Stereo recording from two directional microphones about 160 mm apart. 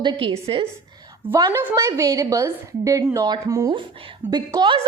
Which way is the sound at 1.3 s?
15° right (ahead or behind).